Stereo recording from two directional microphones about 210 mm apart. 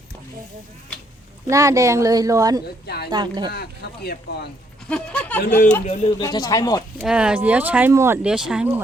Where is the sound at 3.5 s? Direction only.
50° left (ahead or behind).